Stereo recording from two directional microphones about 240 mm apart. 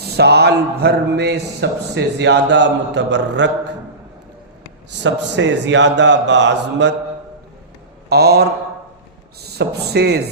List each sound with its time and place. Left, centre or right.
0.0 s speech: right
4.9 s speech: right
8.1 s speech: right